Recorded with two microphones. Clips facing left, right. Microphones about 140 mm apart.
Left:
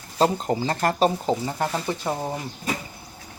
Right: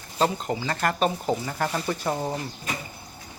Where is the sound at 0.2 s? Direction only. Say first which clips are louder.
Left 3 dB; 35° left (ahead or behind).